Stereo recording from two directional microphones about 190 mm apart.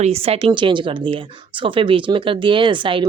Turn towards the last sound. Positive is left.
turn(degrees=-25)  # may be behind; listen again after turning